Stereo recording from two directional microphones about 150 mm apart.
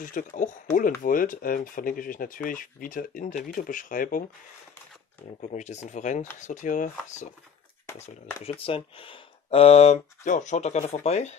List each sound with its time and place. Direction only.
0.0 s speech: 60° left (ahead or behind)
5.4 s speech: 50° left (ahead or behind)
7.8 s speech: 20° left (ahead or behind)
8.5 s speech: 40° left (ahead or behind)